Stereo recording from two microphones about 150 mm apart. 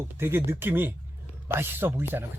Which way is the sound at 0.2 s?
15° right (ahead or behind).